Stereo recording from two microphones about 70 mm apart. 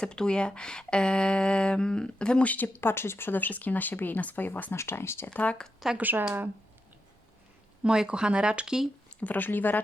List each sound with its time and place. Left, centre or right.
0.0 s speech: centre
2.8 s speech: left
4.8 s speech: left
5.3 s speech: centre
6.0 s speech: right
7.9 s speech: centre
9.0 s speech: left